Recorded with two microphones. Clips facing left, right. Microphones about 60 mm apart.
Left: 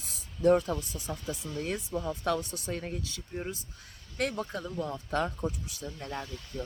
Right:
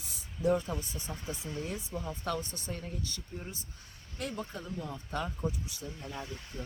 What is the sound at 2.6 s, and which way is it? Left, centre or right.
Speech, left.